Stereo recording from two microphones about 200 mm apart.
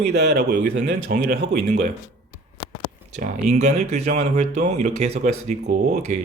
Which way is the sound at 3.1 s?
40° right (ahead or behind).